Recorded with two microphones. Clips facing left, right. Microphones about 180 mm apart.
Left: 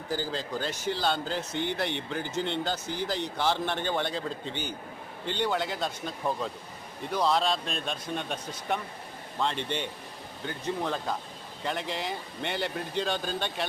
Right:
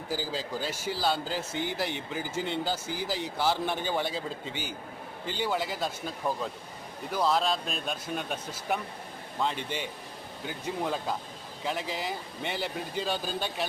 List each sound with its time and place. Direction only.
0.1 s a man's voice: 10° right (ahead or behind)